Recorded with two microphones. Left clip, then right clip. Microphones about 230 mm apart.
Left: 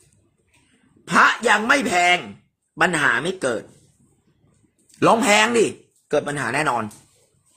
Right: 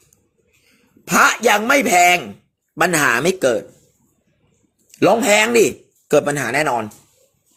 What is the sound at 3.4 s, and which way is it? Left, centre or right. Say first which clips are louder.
Speech: right 7 dB; centre.